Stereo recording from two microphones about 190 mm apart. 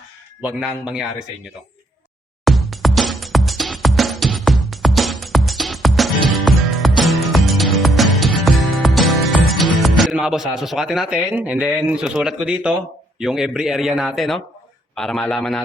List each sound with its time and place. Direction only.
0.4 s speech: 5° right (ahead or behind)
2.4 s music: centre (ahead or behind)
9.8 s speech: centre (ahead or behind)